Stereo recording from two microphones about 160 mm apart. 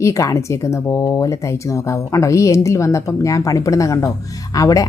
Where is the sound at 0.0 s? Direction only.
20° left (ahead or behind).